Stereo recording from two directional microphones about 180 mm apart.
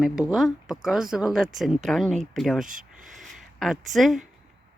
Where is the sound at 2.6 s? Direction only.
50° right (ahead or behind).